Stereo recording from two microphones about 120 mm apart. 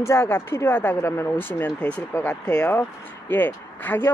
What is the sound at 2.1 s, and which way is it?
Speech, 20° left (ahead or behind).